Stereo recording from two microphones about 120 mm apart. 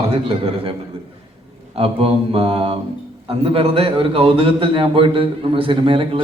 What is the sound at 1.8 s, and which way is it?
A man's voice, 55° right (ahead or behind).